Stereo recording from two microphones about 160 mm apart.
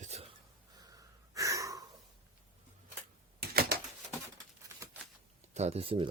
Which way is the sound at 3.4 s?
75° right (ahead or behind).